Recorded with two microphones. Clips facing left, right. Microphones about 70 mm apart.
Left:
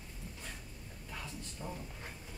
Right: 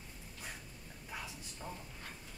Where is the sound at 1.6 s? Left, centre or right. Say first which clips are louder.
Left 2 dB; centre.